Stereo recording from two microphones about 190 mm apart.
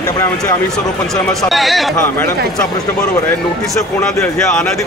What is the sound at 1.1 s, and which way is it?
Speech, centre (ahead or behind).